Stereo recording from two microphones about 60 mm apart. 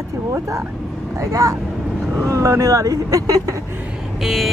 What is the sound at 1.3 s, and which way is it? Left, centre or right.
Speech, right.